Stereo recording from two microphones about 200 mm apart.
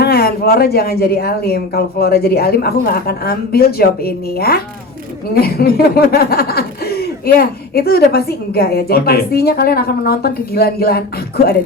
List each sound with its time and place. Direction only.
0.0 s speech: 50° left (ahead or behind)